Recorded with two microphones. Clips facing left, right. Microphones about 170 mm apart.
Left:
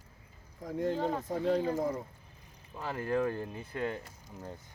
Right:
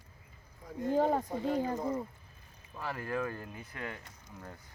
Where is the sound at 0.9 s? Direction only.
45° right (ahead or behind).